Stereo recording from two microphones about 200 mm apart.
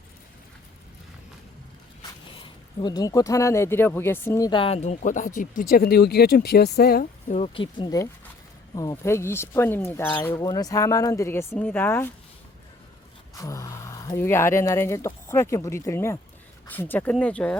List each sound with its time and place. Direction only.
2.2 s speech: 25° left (ahead or behind); by 7.3 s 50° left (ahead or behind)
7.3 s speech: 30° left (ahead or behind); by 12.1 s 10° left (ahead or behind)
13.3 s speech: 15° left (ahead or behind)